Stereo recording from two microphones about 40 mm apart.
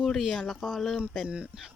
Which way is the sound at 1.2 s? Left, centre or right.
Right.